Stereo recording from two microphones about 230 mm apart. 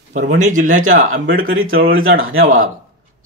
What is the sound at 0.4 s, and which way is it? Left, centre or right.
Speech, right.